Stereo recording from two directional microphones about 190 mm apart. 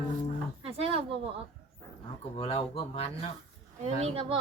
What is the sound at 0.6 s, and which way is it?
Speech, 30° right (ahead or behind).